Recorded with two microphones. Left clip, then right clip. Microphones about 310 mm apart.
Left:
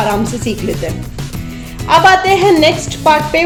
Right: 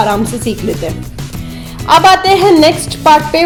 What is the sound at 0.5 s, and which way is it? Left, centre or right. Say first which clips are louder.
Speech: right 1 dB; centre.